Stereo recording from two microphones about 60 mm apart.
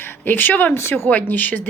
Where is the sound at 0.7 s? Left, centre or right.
Left.